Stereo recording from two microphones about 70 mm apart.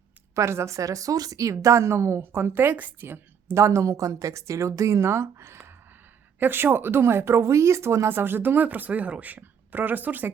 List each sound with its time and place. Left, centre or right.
0.3 s a woman's voice: right
2.2 s a woman's voice: right